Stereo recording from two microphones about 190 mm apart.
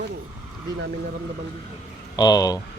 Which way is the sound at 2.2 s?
20° left (ahead or behind).